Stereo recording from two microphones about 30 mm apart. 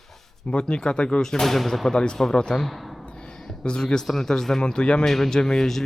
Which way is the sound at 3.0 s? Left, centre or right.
Left.